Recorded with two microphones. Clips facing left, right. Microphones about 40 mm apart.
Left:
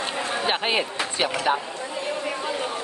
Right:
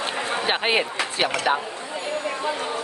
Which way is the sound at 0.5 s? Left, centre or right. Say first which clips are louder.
Right 2 dB; centre.